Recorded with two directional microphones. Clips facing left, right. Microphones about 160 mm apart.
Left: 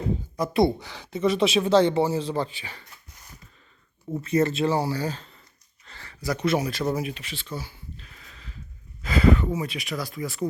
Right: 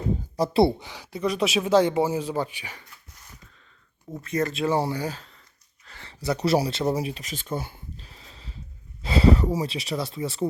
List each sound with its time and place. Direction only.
0.3 s speech: 30° right (ahead or behind)
1.0 s speech: centre (ahead or behind)
4.1 s speech: 5° left (ahead or behind)
4.8 s speech: 15° right (ahead or behind)
6.0 s speech: 25° right (ahead or behind); by 7.8 s 50° right (ahead or behind)
7.9 s a sound: 30° right (ahead or behind)
9.0 s speech: 30° right (ahead or behind)